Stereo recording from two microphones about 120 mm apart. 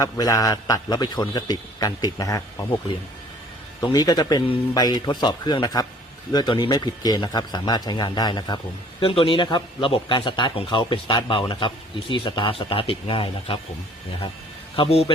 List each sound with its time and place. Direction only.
0.0 s a man's voice: 30° left (ahead or behind)
3.8 s a man's voice: 35° left (ahead or behind)
9.0 s a man's voice: 50° left (ahead or behind)
14.8 s a man's voice: 60° left (ahead or behind)